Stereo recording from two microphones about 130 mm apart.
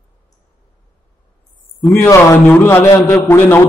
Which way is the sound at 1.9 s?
20° left (ahead or behind).